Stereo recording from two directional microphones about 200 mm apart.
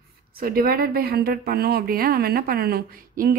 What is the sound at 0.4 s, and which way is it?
A woman's voice, 50° right (ahead or behind).